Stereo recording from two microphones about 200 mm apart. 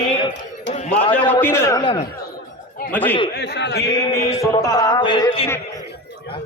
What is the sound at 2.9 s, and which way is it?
Speech, 10° left (ahead or behind).